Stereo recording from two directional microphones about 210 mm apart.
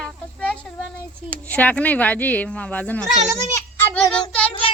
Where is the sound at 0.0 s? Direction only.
5° left (ahead or behind).